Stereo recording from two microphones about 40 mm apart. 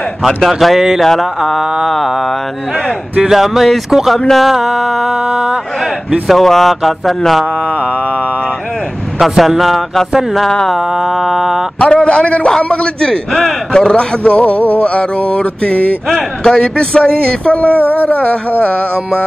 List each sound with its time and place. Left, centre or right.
0.5 s speech: centre
0.7 s mantra: centre
3.3 s mantra: centre
4.3 s speech: centre
4.6 s mantra: centre
6.2 s speech: centre
9.4 s speech: centre
10.8 s mantra: centre
11.8 s speech: left
13.7 s mantra: left
16.4 s speech: centre
17.6 s a sound: right
17.9 s mantra: left